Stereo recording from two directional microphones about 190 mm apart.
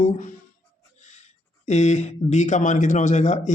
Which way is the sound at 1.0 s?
40° left (ahead or behind).